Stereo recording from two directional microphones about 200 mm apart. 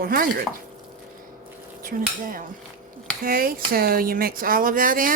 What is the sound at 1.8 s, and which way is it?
Speech, 45° right (ahead or behind).